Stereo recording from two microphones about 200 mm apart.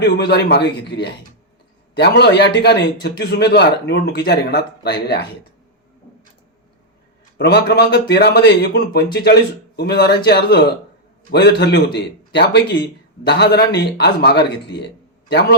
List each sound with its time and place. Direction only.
0.0 s a man's voice: 55° left (ahead or behind)
7.3 s a man's voice: 55° left (ahead or behind)